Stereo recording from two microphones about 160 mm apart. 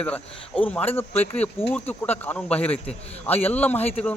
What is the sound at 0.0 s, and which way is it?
Speech, 10° left (ahead or behind).